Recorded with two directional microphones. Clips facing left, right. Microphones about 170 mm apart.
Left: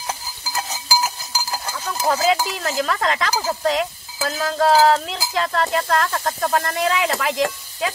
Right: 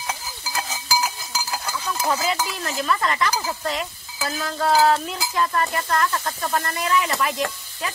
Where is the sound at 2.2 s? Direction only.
90° left.